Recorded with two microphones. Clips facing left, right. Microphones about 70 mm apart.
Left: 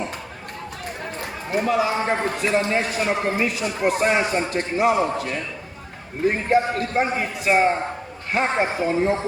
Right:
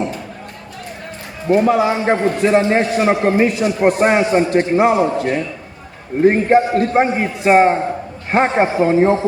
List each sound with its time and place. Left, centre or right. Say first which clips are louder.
1.5 s a man's voice: right 8 dB; right